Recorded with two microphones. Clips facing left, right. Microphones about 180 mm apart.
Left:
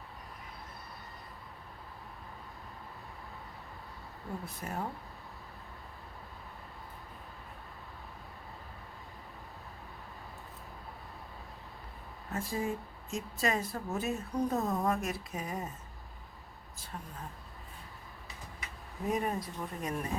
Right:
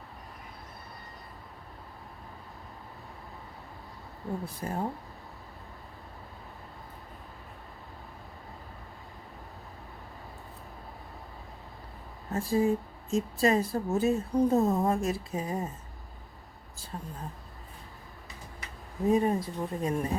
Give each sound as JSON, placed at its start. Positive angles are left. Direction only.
{"t": 4.4, "sound": "speech", "side_deg": -30}
{"t": 12.3, "sound": "speech", "side_deg": -35}
{"t": 16.9, "sound": "speech", "side_deg": -30}
{"t": 19.0, "sound": "speech", "side_deg": -30}